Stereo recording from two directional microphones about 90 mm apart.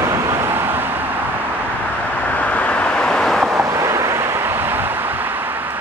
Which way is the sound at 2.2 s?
15° left (ahead or behind).